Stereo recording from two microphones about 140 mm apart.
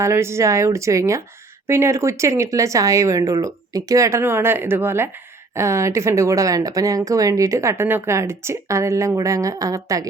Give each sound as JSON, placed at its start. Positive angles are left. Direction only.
{"t": 0.0, "sound": "speech", "side_deg": -20}